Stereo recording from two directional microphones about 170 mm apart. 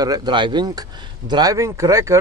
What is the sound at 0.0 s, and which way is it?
Speech, 25° right (ahead or behind).